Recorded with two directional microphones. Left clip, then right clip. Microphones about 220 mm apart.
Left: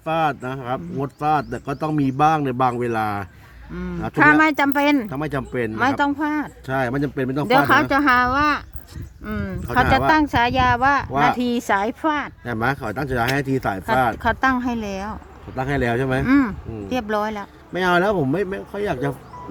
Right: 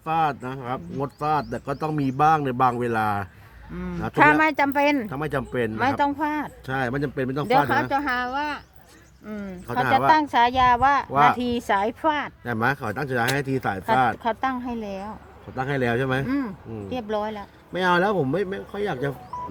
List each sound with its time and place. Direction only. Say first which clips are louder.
0.0 s speech: left 2 dB; 5° left (ahead or behind)
7.7 s a woman's voice: left 7 dB; 25° left (ahead or behind); by 14.2 s 5° left (ahead or behind)
14.2 s a woman's voice: left 6 dB; 15° left (ahead or behind)
15.5 s speech: left 2 dB; 5° left (ahead or behind)
16.2 s a woman's voice: left 9 dB; 25° left (ahead or behind)
17.7 s speech: left 2 dB; 5° left (ahead or behind)